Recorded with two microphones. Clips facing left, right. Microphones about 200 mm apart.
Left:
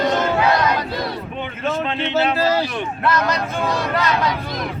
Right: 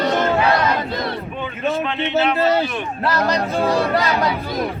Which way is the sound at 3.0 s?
35° right (ahead or behind).